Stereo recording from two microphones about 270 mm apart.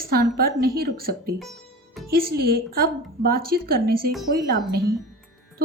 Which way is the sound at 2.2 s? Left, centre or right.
Right.